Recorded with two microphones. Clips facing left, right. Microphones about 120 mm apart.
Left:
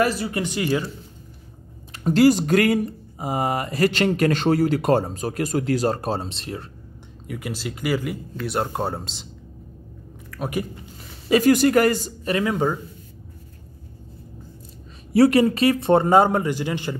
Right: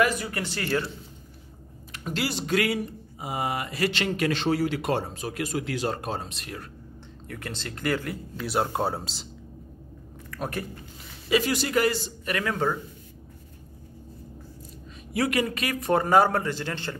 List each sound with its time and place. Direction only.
0.0 s speech: 30° left (ahead or behind)
0.4 s speech: 15° left (ahead or behind)
1.9 s speech: 40° left (ahead or behind)
7.2 s speech: 10° left (ahead or behind)
10.3 s a sound: centre (ahead or behind)
11.2 s a man's voice: 45° left (ahead or behind)
12.3 s a man's voice: 20° left (ahead or behind)
15.1 s a man's voice: 35° left (ahead or behind); by 16.9 s 15° left (ahead or behind)